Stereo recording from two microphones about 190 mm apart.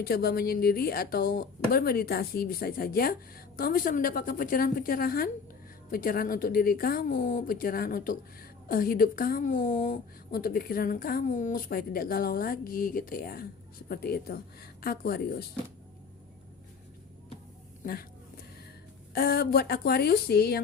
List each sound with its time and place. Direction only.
0.0 s a woman's voice: 55° left (ahead or behind)
19.1 s speech: 55° left (ahead or behind)